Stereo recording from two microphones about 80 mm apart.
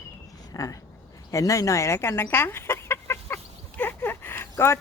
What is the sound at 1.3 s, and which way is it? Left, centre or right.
Chicken, left.